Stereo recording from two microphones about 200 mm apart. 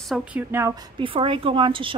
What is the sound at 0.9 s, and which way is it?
Speech, 25° right (ahead or behind).